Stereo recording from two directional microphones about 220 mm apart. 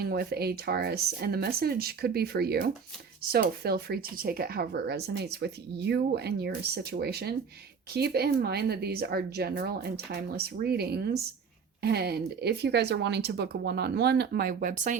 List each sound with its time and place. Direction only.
0.0 s speech: 45° right (ahead or behind)